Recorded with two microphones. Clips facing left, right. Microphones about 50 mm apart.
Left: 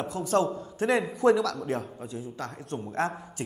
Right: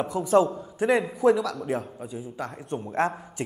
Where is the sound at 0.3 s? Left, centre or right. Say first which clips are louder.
Right 5 dB; centre.